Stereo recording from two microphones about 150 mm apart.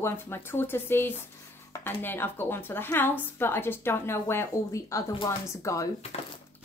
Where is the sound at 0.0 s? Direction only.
15° left (ahead or behind).